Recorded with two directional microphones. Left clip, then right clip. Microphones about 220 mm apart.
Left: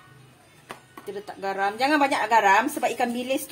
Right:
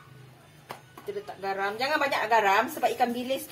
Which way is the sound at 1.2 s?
50° left (ahead or behind).